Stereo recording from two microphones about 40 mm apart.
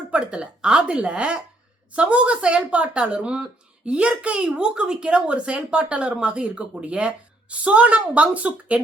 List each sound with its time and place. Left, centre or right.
0.1 s a woman's voice: right